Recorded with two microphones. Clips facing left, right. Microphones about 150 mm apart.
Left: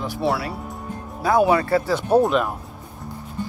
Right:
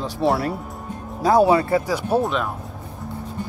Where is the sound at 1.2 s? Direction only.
35° right (ahead or behind).